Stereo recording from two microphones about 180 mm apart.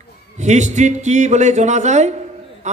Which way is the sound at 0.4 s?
40° right (ahead or behind).